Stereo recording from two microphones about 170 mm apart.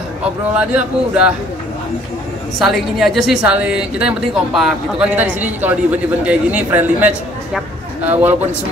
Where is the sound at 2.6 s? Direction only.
Centre (ahead or behind).